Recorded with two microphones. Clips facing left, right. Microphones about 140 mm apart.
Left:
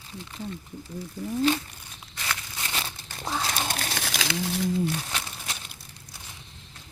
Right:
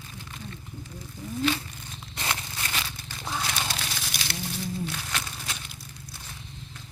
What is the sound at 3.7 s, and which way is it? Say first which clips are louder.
Wild animals: left 3 dB; 50° left (ahead or behind).